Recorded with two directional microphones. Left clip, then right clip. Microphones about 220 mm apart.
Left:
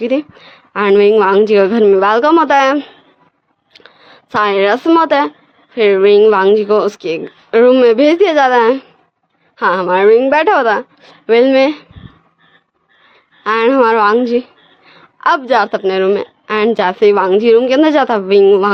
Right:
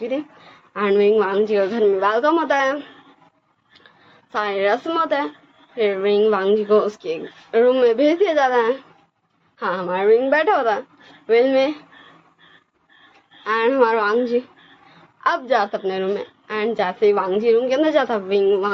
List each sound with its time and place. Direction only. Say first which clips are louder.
0.0 s a woman's voice: left 9 dB; 55° left (ahead or behind)
3.7 s a sound: left 9 dB; 55° left (ahead or behind)
5.7 s a woman's voice: left 10 dB; 55° left (ahead or behind)
13.4 s a woman's voice: left 7 dB; 50° left (ahead or behind)